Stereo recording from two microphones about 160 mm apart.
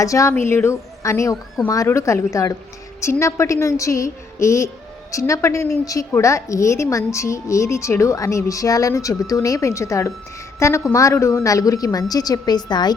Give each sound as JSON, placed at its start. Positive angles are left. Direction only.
{"t": 0.0, "sound": "a woman's voice", "side_deg": 20}